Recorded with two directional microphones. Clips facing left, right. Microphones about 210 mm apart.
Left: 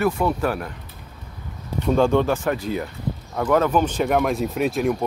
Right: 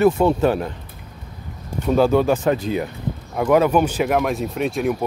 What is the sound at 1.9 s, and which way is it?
Speech, 5° right (ahead or behind).